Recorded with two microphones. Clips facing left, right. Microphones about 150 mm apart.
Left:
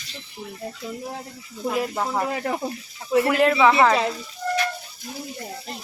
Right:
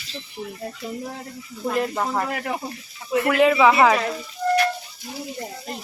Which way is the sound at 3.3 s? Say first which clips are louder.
Right 3 dB; centre (ahead or behind).